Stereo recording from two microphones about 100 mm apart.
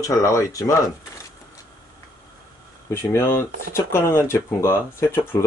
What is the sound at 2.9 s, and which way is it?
Speech, 25° left (ahead or behind).